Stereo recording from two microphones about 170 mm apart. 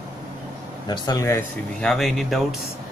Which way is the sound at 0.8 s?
20° left (ahead or behind).